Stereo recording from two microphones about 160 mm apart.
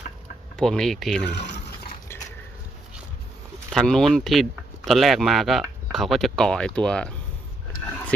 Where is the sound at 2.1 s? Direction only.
15° left (ahead or behind).